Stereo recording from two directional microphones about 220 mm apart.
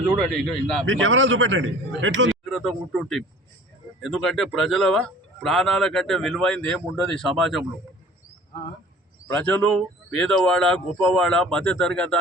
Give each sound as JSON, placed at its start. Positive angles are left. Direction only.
{"t": 0.2, "sound": "a man's voice", "side_deg": 5}
{"t": 0.9, "sound": "speech", "side_deg": -60}
{"t": 2.4, "sound": "a man's voice", "side_deg": 0}
{"t": 9.2, "sound": "a man's voice", "side_deg": 5}